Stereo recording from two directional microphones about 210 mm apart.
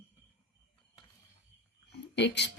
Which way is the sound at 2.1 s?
55° left (ahead or behind).